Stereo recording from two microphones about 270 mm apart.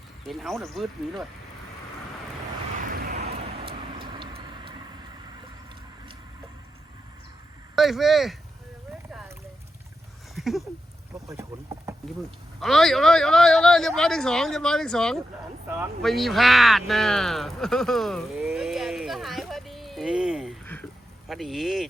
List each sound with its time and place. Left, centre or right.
0.3 s a man's voice: centre
2.8 s vehicle: right
3.6 s vehicle: centre
7.8 s a man's voice: centre
10.3 s a sound: centre
11.3 s speech: centre
12.5 s a man's voice: centre